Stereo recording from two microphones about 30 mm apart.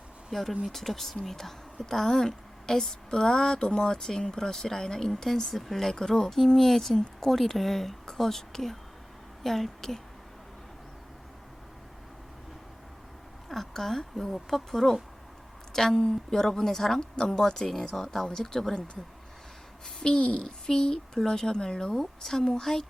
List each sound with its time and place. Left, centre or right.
0.7 s a woman's voice: centre
5.9 s a woman's voice: centre
13.5 s a sound: centre
14.0 s a woman's voice: centre
17.0 s speech: left
20.0 s speech: left
20.2 s speech: left
20.7 s speech: left
21.9 s speech: centre